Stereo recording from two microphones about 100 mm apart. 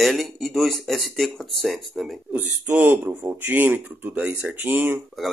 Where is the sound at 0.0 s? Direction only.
Centre (ahead or behind).